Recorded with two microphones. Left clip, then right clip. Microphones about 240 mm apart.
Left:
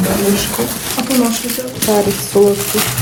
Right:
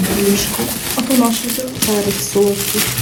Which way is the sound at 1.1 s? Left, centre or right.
Right.